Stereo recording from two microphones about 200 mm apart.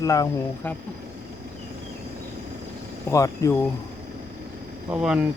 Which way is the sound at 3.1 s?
15° left (ahead or behind).